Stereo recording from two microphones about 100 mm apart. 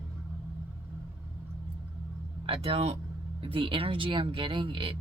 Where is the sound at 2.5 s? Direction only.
75° right (ahead or behind).